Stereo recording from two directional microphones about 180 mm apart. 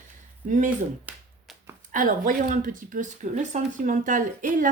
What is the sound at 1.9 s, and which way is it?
Speech, 50° right (ahead or behind).